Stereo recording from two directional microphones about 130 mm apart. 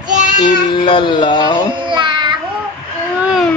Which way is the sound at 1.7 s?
40° right (ahead or behind).